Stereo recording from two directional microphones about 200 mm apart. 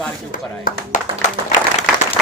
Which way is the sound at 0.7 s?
40° left (ahead or behind).